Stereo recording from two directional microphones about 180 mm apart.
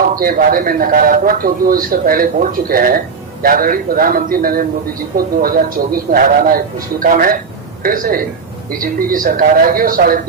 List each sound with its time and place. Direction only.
0.2 s a man's voice: 50° right (ahead or behind)